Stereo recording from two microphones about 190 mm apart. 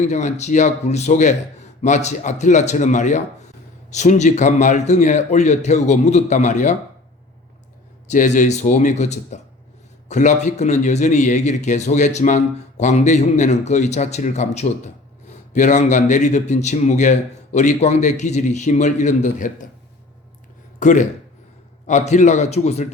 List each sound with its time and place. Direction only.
0.0 s speech: 40° left (ahead or behind)
8.0 s speech: 40° left (ahead or behind)
20.7 s speech: 40° left (ahead or behind)